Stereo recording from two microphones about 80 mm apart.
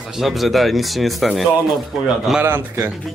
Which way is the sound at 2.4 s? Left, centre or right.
Right.